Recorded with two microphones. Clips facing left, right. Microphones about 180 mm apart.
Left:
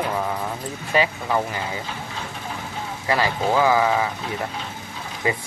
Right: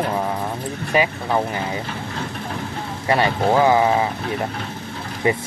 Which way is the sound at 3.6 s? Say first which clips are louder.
Right 3 dB; 25° right (ahead or behind).